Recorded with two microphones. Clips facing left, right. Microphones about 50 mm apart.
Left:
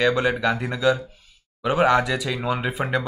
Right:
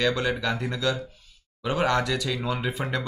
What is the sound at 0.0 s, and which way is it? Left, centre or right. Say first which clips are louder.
Speech: left 5 dB; centre.